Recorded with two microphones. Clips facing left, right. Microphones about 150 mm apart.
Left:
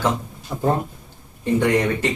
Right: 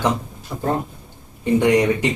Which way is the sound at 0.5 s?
5° left (ahead or behind).